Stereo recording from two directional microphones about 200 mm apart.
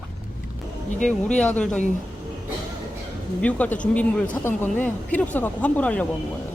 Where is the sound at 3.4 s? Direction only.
5° left (ahead or behind).